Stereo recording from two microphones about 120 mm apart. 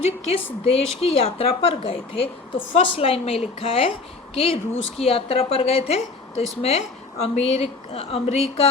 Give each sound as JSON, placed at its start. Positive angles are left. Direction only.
{"t": 0.6, "sound": "a woman's voice", "side_deg": 55}